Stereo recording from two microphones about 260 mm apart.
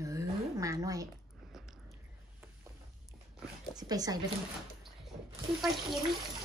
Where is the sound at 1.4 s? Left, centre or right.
Centre.